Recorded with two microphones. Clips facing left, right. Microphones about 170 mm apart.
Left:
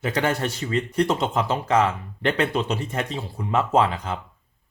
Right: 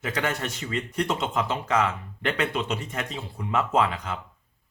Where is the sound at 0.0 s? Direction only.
30° left (ahead or behind).